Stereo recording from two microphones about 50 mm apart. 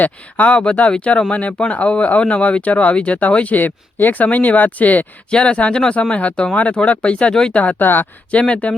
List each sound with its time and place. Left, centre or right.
0.0 s speech: left
5.3 s speech: left
7.8 s speech: left
8.3 s speech: left